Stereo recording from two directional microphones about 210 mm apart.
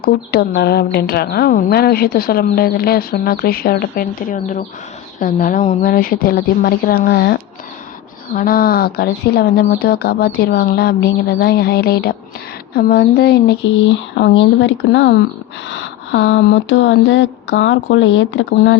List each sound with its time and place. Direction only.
0.0 s speech: 45° left (ahead or behind); by 18.8 s 65° left (ahead or behind)